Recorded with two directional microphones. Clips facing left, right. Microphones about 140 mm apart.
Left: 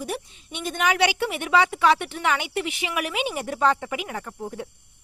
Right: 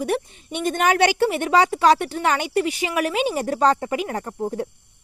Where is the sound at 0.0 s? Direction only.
55° right (ahead or behind).